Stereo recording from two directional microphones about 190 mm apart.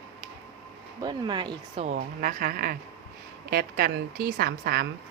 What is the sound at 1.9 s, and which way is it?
A woman's voice, 50° right (ahead or behind).